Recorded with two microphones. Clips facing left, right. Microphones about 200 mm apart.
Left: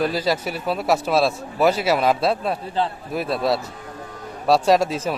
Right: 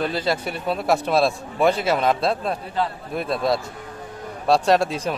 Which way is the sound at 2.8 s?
25° left (ahead or behind).